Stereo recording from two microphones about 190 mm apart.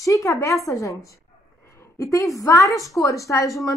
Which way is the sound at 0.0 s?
15° left (ahead or behind).